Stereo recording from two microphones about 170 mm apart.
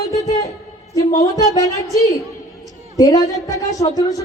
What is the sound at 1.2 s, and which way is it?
Speech, 20° left (ahead or behind).